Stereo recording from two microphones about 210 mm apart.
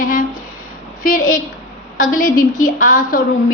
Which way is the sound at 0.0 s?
40° left (ahead or behind).